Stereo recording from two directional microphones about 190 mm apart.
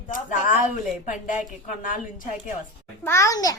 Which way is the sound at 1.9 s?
45° left (ahead or behind).